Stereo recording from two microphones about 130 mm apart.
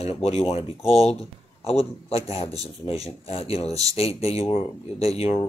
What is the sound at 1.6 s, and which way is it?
Speech, 50° left (ahead or behind).